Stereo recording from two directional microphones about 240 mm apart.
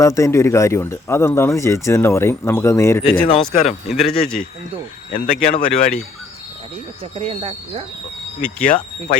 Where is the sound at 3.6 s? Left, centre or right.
Centre.